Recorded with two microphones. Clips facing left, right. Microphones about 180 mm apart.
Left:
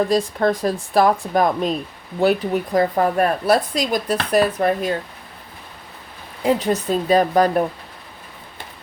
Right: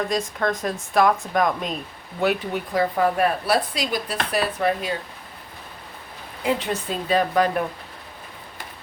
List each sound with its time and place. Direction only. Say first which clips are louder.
0.1 s a woman's voice: left 6 dB; 35° left (ahead or behind)
6.4 s speech: left 5 dB; 40° left (ahead or behind)